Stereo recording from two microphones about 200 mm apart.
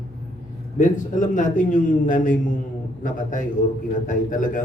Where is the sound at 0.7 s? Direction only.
40° left (ahead or behind).